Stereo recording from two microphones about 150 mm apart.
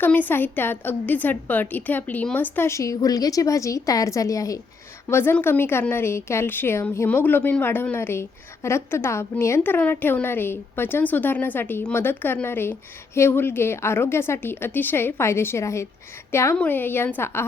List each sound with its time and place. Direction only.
0.0 s a woman's voice: 10° left (ahead or behind)